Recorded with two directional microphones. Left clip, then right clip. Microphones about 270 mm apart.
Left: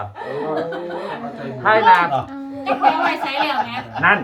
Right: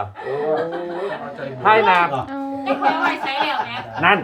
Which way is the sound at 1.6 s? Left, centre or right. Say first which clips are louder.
Left 1 dB; right.